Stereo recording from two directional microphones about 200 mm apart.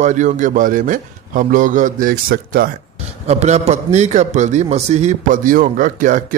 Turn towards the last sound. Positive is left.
turn(degrees=-40)  # may be behind; listen again after turning